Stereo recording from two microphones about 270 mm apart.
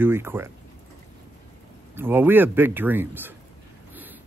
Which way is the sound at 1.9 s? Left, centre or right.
Centre.